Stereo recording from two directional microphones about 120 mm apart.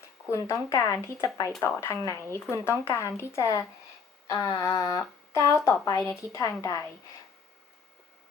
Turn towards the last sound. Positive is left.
turn(degrees=25)  # may be behind; listen again after turning